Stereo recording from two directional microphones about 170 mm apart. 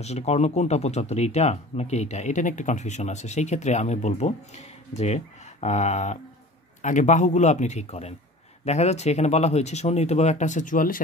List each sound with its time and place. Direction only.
0.0 s a man's voice: 40° left (ahead or behind)